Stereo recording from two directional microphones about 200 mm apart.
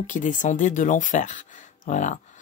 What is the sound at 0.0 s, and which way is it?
Speech, 40° left (ahead or behind).